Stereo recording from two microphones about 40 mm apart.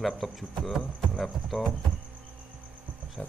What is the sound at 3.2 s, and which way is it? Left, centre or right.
Insect, left.